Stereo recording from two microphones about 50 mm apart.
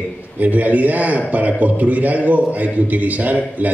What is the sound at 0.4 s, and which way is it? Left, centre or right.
A man's voice, right.